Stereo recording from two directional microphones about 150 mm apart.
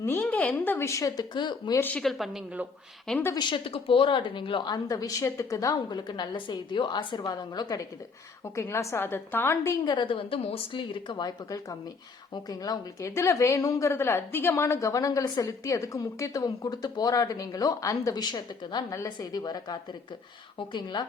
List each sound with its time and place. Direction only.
0.0 s a woman's voice: 10° left (ahead or behind); by 1.8 s 30° left (ahead or behind)
1.8 s a woman's voice: 5° left (ahead or behind)
3.1 s a woman's voice: 10° left (ahead or behind)
3.3 s a woman's voice: 30° left (ahead or behind); by 9.7 s 15° left (ahead or behind)
9.8 s a woman's voice: 30° left (ahead or behind)